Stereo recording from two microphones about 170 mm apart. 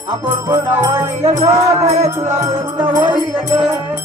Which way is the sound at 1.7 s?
40° right (ahead or behind).